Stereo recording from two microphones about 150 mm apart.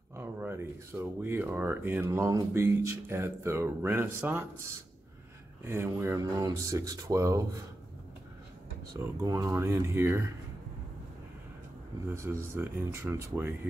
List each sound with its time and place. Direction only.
0.1 s speech: 15° right (ahead or behind)
9.2 s speech: 20° right (ahead or behind)
12.1 s speech: 15° right (ahead or behind)